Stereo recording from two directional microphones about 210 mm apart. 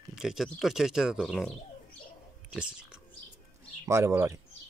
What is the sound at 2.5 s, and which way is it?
Speech, 5° right (ahead or behind).